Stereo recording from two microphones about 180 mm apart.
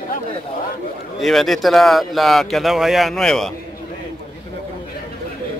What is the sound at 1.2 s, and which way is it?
Speech, centre (ahead or behind).